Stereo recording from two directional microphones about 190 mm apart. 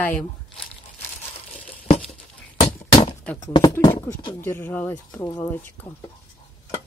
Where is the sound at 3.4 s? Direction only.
20° left (ahead or behind).